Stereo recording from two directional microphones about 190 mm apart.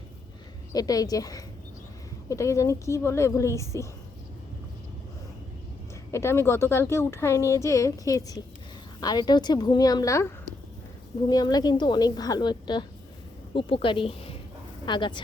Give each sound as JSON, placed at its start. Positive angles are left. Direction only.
{"t": 0.7, "sound": "a woman's voice", "side_deg": 20}
{"t": 6.1, "sound": "a woman's voice", "side_deg": 15}